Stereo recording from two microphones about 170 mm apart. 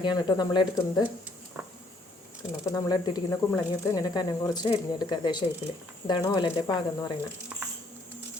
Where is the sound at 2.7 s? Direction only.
25° left (ahead or behind).